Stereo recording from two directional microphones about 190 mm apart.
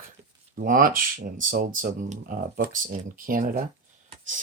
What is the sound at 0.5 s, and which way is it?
Speech, 45° right (ahead or behind).